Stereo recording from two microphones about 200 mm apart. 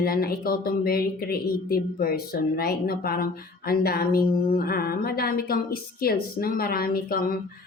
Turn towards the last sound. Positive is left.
turn(degrees=45)  # may be behind; listen again after turning